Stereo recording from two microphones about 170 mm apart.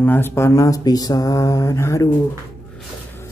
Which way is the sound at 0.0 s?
10° left (ahead or behind).